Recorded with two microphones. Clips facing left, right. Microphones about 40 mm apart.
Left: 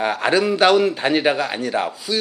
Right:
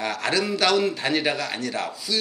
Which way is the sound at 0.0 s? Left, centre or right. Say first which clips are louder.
Left 6 dB; left.